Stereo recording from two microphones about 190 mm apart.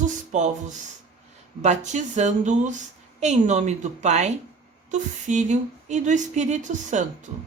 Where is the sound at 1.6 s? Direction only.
40° right (ahead or behind).